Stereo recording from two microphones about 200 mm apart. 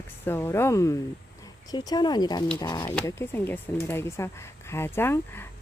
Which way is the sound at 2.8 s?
10° left (ahead or behind).